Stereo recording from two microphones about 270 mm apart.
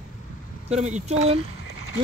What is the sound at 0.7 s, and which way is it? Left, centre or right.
Speech, right.